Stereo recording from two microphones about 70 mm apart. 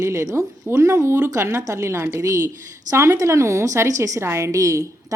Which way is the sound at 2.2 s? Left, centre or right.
Right.